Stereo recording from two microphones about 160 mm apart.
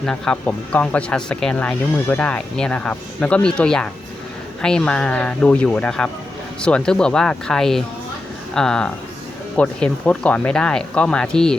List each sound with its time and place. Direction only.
0.0 s speech: 5° left (ahead or behind)